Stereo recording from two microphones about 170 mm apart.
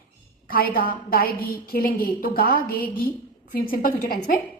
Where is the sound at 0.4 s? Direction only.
60° left (ahead or behind).